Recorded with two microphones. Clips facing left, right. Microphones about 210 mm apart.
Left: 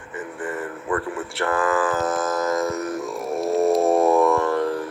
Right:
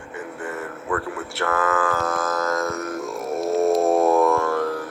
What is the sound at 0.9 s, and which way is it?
Speech, 25° left (ahead or behind).